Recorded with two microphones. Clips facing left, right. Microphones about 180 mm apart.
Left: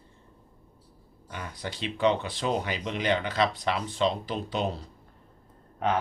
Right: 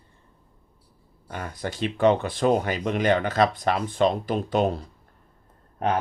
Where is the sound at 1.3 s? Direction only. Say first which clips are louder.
Right 5 dB; 45° right (ahead or behind).